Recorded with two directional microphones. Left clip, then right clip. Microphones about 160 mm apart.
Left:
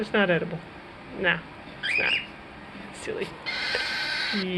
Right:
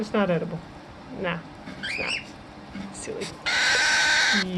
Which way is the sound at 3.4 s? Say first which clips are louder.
Right 8 dB; 25° right (ahead or behind).